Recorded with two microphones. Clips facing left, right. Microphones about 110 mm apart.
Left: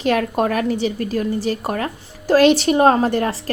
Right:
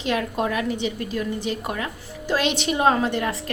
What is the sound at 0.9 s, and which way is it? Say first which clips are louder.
A woman's voice: left 6 dB; 45° left (ahead or behind).